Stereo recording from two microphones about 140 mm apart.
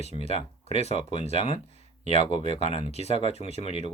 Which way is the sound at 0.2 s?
45° left (ahead or behind).